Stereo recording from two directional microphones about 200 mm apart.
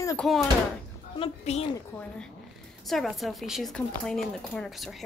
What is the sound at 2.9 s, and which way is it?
Speech, centre (ahead or behind).